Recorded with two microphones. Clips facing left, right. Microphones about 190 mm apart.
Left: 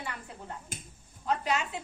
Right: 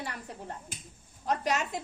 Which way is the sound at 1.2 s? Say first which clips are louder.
Even; 40° right (ahead or behind).